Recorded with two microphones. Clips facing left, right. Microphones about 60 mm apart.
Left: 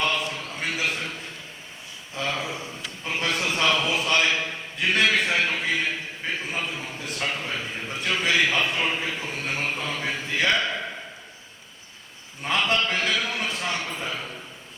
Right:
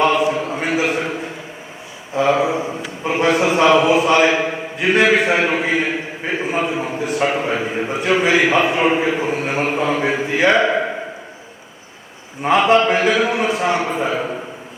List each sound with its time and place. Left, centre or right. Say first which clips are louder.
0.0 s a sound: right 11 dB; right
4.8 s a man's voice: right 8 dB; centre
7.9 s a man's voice: right 8 dB; centre
12.4 s a man's voice: right 11 dB; centre
13.9 s a man's voice: right 12 dB; right